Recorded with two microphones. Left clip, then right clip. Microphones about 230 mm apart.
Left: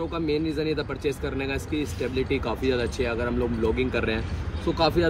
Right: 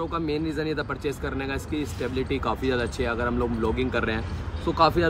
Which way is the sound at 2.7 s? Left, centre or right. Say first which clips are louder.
Left 4 dB; right.